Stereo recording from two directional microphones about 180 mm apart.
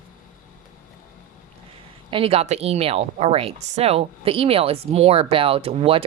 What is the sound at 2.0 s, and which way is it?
Speech, 30° right (ahead or behind).